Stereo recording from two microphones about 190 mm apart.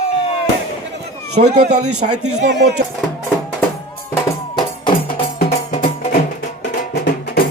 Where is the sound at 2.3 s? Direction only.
65° right (ahead or behind).